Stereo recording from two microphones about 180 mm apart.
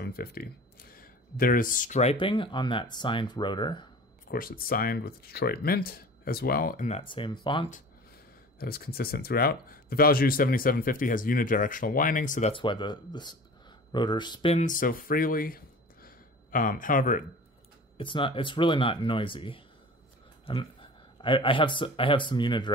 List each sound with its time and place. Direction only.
0.0 s speech: 60° left (ahead or behind); by 3.9 s 25° left (ahead or behind)
4.3 s speech: 55° left (ahead or behind)
6.9 s speech: 30° left (ahead or behind)
8.5 s speech: 60° left (ahead or behind)
12.5 s speech: 25° left (ahead or behind)
14.6 s speech: 50° left (ahead or behind)
17.9 s speech: 30° left (ahead or behind)